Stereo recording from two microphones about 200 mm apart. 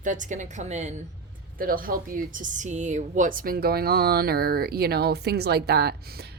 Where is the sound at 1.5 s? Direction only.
45° right (ahead or behind).